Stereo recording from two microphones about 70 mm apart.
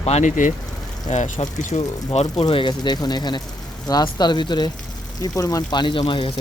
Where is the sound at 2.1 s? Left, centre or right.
Left.